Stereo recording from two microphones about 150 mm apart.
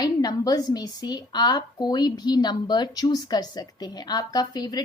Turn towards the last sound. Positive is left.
turn(degrees=25)  # may be behind; listen again after turning